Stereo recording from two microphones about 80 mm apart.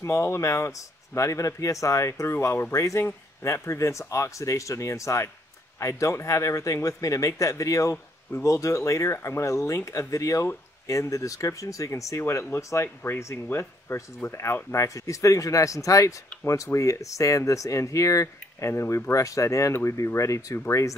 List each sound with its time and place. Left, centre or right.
0.0 s speech: left